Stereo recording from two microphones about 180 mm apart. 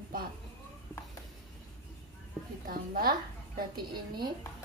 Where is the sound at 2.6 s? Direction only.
50° right (ahead or behind).